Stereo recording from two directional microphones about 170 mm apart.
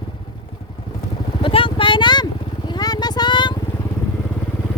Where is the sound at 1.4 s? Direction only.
30° left (ahead or behind).